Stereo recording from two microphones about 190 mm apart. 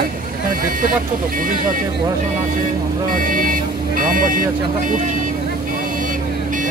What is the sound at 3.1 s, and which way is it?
Speech, 45° right (ahead or behind).